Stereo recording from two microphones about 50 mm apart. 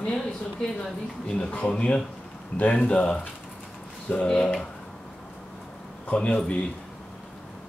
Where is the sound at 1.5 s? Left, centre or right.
Left.